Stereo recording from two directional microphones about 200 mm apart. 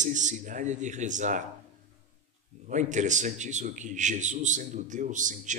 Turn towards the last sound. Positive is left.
turn(degrees=-40)  # may be behind; listen again after turning